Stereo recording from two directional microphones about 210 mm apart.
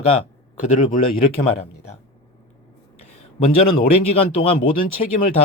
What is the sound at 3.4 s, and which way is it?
Speech, 30° left (ahead or behind).